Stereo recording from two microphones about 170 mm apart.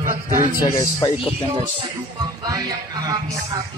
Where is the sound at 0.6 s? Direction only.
20° left (ahead or behind).